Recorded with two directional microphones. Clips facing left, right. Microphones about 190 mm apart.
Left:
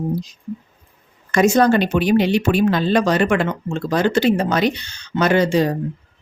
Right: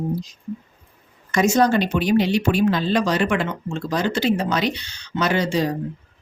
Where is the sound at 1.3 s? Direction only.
55° left (ahead or behind).